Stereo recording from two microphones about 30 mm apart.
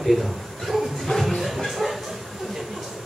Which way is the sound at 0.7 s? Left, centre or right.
Right.